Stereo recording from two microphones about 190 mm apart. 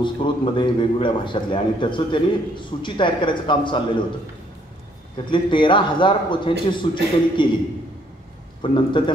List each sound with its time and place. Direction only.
0.0 s a man's voice: 25° left (ahead or behind)
5.1 s a man's voice: 25° left (ahead or behind)
8.7 s a man's voice: 25° left (ahead or behind)